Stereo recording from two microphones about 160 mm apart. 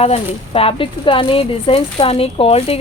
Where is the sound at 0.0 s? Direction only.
40° left (ahead or behind).